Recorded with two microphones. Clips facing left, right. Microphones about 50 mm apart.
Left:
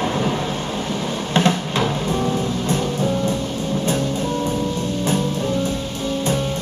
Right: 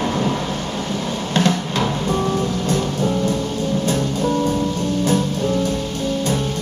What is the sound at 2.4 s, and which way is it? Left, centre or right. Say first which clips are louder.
Music: right 1 dB; left.